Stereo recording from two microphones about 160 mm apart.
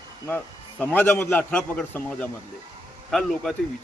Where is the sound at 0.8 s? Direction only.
10° left (ahead or behind).